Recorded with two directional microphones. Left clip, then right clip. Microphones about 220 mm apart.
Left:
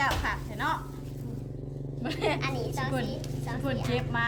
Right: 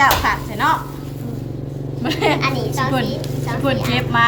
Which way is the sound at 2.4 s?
30° left (ahead or behind).